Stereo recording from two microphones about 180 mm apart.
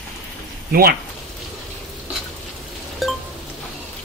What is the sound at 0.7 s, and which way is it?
Speech, 55° right (ahead or behind).